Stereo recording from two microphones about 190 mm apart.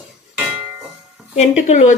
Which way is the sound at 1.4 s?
35° left (ahead or behind).